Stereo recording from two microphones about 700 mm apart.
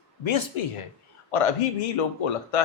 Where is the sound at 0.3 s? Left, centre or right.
Left.